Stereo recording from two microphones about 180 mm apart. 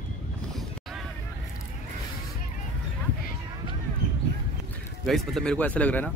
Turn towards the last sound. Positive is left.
turn(degrees=10)  # may be behind; listen again after turning